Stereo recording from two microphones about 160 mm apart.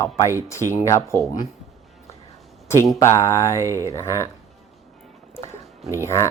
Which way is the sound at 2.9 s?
20° left (ahead or behind).